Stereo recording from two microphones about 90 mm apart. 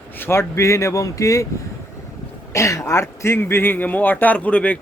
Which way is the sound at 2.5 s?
35° left (ahead or behind).